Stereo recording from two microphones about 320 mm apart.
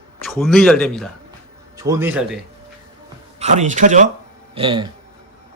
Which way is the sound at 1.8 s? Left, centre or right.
Centre.